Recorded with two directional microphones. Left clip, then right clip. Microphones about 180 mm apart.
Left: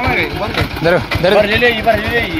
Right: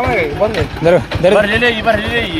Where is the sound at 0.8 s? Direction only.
20° right (ahead or behind).